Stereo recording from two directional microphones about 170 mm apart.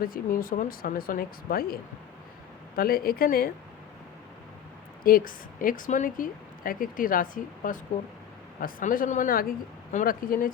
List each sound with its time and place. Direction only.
0.0 s a woman's voice: 55° left (ahead or behind)
5.0 s a woman's voice: 55° left (ahead or behind)